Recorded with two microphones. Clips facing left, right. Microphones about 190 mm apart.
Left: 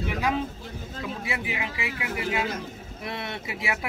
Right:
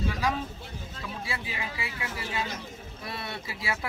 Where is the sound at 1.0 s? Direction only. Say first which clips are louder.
Left 5 dB; 20° left (ahead or behind).